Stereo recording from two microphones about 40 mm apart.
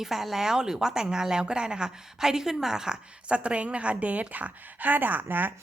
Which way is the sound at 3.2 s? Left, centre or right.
Right.